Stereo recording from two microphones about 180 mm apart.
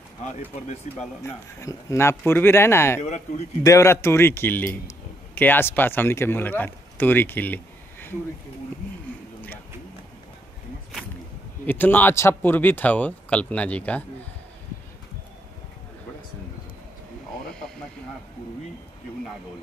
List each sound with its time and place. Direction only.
1.2 s speech: 15° left (ahead or behind)
3.0 s speech: 40° left (ahead or behind)
3.6 s a man's voice: 15° left (ahead or behind)
11.6 s speech: 10° left (ahead or behind)